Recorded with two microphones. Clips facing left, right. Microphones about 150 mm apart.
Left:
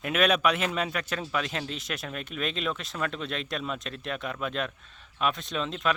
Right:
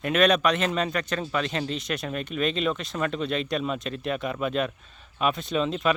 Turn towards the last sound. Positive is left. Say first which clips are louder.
# right 5 dB
turn(degrees=0)  # may be behind; listen again after turning